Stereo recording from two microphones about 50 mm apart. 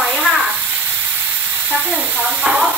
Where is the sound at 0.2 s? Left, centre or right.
Centre.